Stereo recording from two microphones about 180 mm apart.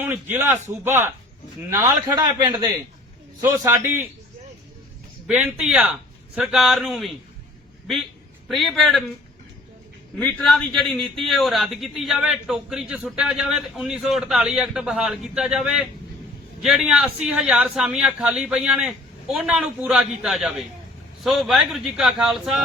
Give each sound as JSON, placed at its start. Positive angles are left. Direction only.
{"t": 0.1, "sound": "a man's voice", "side_deg": -10}
{"t": 5.3, "sound": "a man's voice", "side_deg": -5}
{"t": 8.4, "sound": "a man's voice", "side_deg": 0}
{"t": 10.2, "sound": "a man's voice", "side_deg": 5}